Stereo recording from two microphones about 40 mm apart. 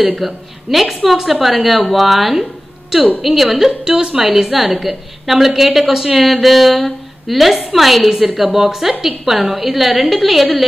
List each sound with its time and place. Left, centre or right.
0.0 s a woman's voice: centre